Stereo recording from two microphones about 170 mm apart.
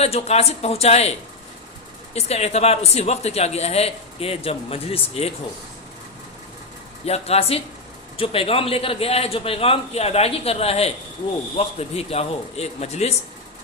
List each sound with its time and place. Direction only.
0.0 s a man's voice: 35° left (ahead or behind)
2.1 s a man's voice: 40° left (ahead or behind)
7.0 s a man's voice: 35° left (ahead or behind)